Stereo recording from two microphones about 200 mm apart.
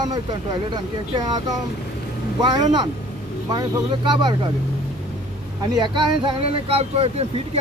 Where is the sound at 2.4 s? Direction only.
20° right (ahead or behind).